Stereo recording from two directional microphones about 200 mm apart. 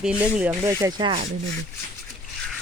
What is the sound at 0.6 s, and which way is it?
Speech, 15° right (ahead or behind).